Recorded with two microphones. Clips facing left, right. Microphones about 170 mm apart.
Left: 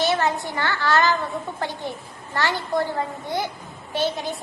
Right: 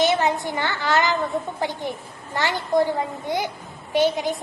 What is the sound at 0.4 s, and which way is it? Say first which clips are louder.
A child's voice: even; 20° right (ahead or behind).